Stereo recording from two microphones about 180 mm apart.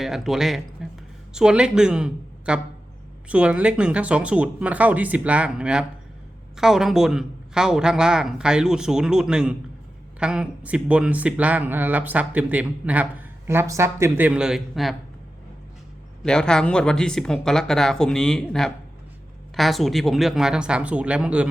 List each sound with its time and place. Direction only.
0.0 s a woman's voice: centre (ahead or behind)
16.2 s speech: 5° left (ahead or behind)